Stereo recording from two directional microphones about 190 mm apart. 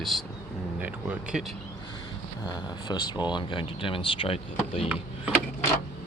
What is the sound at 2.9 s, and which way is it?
Speech, 20° left (ahead or behind).